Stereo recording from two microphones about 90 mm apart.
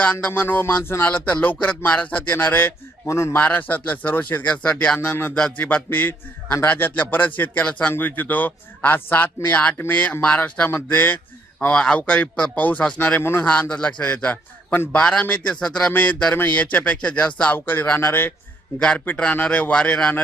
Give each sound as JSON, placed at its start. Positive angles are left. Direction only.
{"t": 0.0, "sound": "a man's voice", "side_deg": 15}
{"t": 1.0, "sound": "a man's voice", "side_deg": 15}
{"t": 4.9, "sound": "a man's voice", "side_deg": 25}
{"t": 10.7, "sound": "a man's voice", "side_deg": 25}
{"t": 11.7, "sound": "a man's voice", "side_deg": 10}
{"t": 18.8, "sound": "a man's voice", "side_deg": 15}